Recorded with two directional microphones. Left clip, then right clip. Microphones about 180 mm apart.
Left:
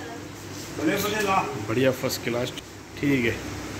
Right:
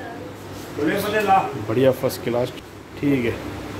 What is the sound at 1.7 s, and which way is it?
Speech, 15° right (ahead or behind).